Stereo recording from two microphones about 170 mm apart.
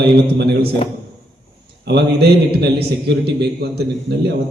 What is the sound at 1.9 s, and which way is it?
A man's voice, 75° right (ahead or behind).